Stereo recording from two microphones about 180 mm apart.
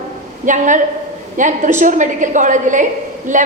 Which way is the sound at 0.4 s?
45° right (ahead or behind).